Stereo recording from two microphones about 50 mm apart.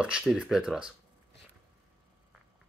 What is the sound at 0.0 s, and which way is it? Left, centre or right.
Speech, centre.